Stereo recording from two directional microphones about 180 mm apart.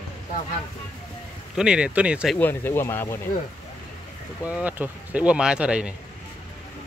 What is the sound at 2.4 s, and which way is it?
Speech, 10° left (ahead or behind).